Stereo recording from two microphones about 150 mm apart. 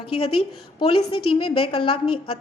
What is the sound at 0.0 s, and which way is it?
A woman's voice, 35° left (ahead or behind).